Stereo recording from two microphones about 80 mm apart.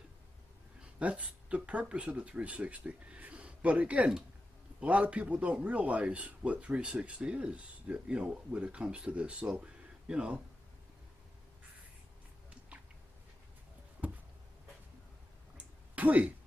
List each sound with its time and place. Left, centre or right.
0.9 s a man's voice: centre
12.4 s chewing: centre
15.5 s a sound: centre